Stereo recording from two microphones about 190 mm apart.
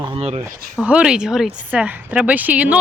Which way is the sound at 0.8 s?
5° right (ahead or behind).